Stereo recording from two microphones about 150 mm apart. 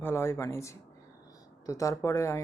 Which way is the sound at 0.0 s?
15° left (ahead or behind).